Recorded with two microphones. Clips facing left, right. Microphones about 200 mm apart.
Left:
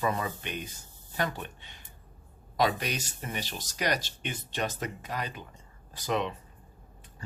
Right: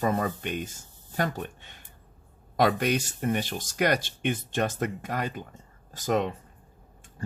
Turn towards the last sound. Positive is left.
turn(degrees=-45)  # may be behind; listen again after turning